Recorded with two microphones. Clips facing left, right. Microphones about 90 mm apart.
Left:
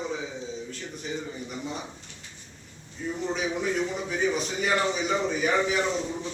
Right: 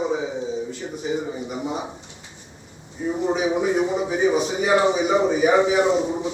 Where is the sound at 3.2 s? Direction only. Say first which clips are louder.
Right 8 dB; 20° right (ahead or behind).